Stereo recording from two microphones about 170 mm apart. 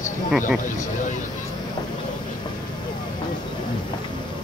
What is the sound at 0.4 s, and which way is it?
Speech, 50° left (ahead or behind).